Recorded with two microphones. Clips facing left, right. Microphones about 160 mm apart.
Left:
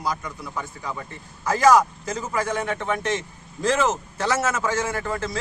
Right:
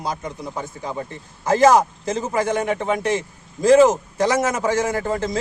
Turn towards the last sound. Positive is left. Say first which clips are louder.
# right 5 dB
turn(degrees=-20)  # may be behind; listen again after turning